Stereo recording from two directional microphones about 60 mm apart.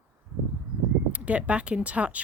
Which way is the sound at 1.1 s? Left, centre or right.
Right.